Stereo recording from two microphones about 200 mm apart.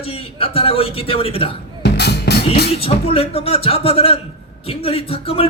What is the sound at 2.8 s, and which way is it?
A man's voice, 30° left (ahead or behind).